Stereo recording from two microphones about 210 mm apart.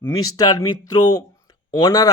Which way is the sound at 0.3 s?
15° left (ahead or behind).